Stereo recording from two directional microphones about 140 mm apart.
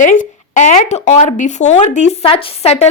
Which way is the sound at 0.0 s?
65° left (ahead or behind).